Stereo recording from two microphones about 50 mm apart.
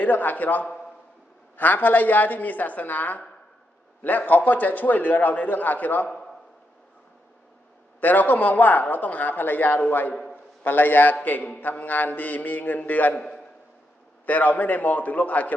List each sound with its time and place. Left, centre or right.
0.0 s speech: left
8.0 s speech: left
14.3 s speech: left